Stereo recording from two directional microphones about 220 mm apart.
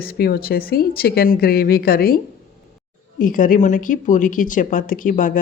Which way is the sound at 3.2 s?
40° left (ahead or behind).